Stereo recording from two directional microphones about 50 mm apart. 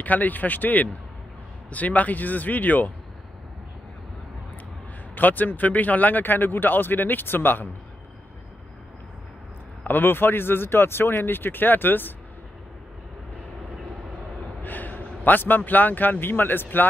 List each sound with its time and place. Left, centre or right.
0.0 s speech: left
5.1 s speech: left
9.8 s speech: left
14.6 s a man's voice: left